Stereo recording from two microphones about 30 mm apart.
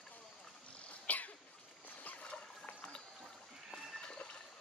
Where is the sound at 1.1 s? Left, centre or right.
Left.